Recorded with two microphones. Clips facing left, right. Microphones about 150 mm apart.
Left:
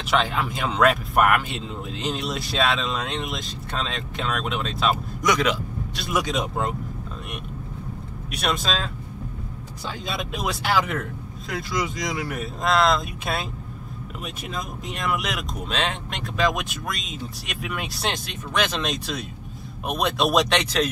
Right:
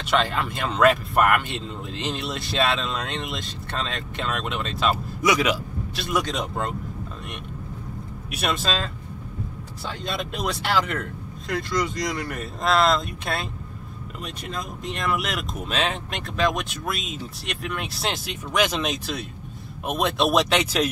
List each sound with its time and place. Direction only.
0.0 s speech: 5° left (ahead or behind)
6.0 s speech: 5° left (ahead or behind)
8.3 s speech: 5° right (ahead or behind)